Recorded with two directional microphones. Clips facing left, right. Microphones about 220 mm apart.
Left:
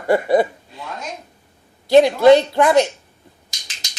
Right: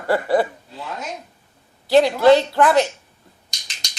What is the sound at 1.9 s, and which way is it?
Speech, 15° left (ahead or behind).